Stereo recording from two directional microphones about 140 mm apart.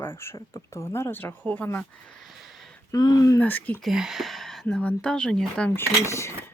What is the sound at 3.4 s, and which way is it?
Speech, 15° left (ahead or behind).